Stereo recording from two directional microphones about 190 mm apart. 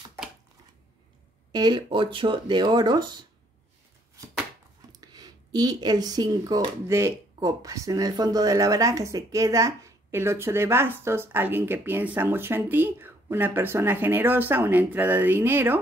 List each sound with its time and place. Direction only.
1.5 s speech: 20° right (ahead or behind)
5.0 s speech: 20° right (ahead or behind)